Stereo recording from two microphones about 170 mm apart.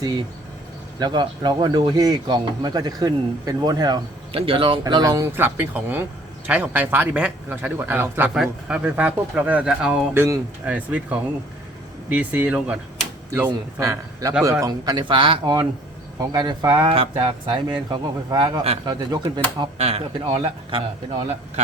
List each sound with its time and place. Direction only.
0.9 s speech: 25° right (ahead or behind)